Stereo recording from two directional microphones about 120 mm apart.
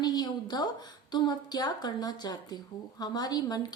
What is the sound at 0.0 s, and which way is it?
A woman's voice, 35° left (ahead or behind).